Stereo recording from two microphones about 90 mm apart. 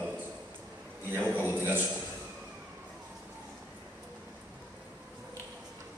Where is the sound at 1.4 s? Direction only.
20° right (ahead or behind).